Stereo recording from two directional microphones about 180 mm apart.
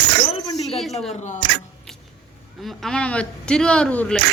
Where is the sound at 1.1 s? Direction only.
40° left (ahead or behind).